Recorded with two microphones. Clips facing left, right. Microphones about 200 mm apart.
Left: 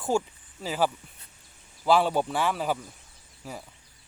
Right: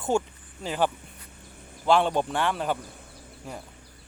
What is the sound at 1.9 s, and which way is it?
Speech, 5° left (ahead or behind).